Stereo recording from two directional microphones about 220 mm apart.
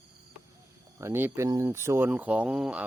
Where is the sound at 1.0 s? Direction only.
10° right (ahead or behind).